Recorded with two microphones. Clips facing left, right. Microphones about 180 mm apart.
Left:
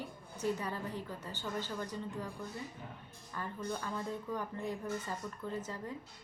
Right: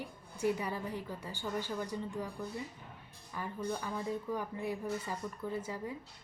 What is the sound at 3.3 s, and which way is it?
A woman's voice, 10° right (ahead or behind).